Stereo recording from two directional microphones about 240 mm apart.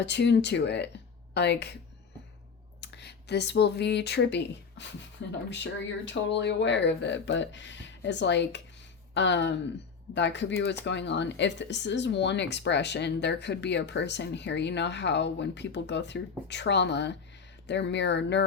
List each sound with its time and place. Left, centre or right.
0.0 s speech: left
2.8 s speech: left
6.1 s speech: left